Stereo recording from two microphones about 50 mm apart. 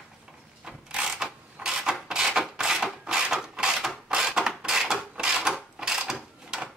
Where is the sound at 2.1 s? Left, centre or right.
Centre.